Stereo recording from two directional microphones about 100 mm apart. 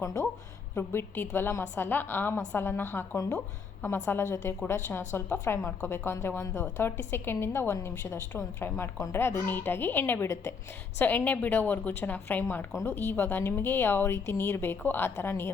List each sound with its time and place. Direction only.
0.0 s a woman's voice: 30° left (ahead or behind)